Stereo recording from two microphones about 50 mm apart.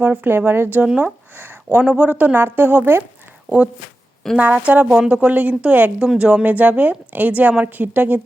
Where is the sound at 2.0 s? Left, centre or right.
Right.